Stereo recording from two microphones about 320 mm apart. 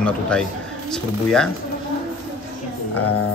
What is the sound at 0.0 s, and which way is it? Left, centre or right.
Speech, centre.